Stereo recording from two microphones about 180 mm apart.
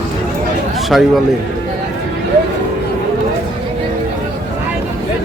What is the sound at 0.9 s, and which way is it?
Speech, centre (ahead or behind).